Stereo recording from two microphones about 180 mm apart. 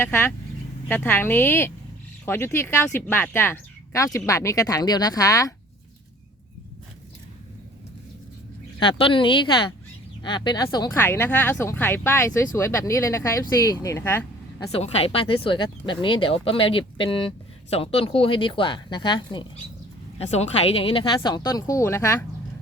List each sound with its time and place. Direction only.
0.0 s speech: 10° left (ahead or behind)
8.8 s speech: 30° left (ahead or behind); by 14.3 s 15° left (ahead or behind)
14.7 s speech: 35° left (ahead or behind)
20.1 s speech: 35° left (ahead or behind); by 22.2 s 15° left (ahead or behind)